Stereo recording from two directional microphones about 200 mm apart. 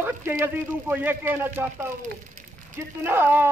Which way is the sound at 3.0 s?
10° right (ahead or behind).